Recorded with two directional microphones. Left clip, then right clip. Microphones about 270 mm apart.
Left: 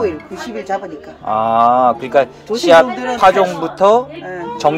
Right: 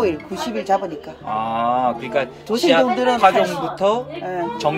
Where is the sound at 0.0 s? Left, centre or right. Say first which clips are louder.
Left 1 dB; right.